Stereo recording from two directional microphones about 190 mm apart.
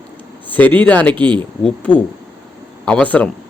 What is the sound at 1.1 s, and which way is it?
Speech, 25° right (ahead or behind).